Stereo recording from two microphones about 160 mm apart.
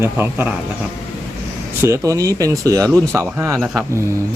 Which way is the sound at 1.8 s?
15° right (ahead or behind).